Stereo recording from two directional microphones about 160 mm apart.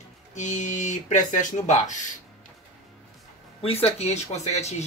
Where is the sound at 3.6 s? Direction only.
40° left (ahead or behind).